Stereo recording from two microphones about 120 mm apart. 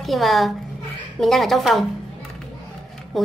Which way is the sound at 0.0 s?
Centre (ahead or behind).